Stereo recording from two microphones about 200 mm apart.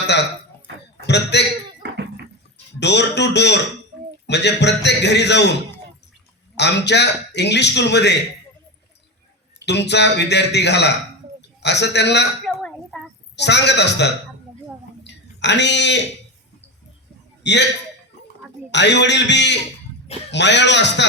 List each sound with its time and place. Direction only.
1.0 s a man's voice: 60° left (ahead or behind)
1.8 s a sound: 55° right (ahead or behind)
2.8 s a man's voice: 60° left (ahead or behind)
6.6 s a man's voice: 60° left (ahead or behind)
9.6 s a man's voice: 60° left (ahead or behind)
13.3 s a man's voice: 60° left (ahead or behind)
15.0 s a sound: 60° left (ahead or behind)
17.4 s a man's voice: 60° left (ahead or behind)
18.7 s a man's voice: 60° left (ahead or behind)